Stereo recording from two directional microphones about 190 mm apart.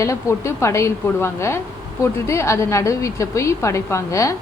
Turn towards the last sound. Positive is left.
turn(degrees=15)  # may be behind; listen again after turning